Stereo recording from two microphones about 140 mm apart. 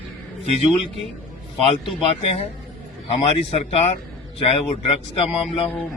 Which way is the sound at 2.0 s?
40° left (ahead or behind).